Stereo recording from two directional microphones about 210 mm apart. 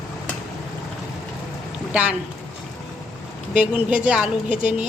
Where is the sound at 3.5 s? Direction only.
5° right (ahead or behind).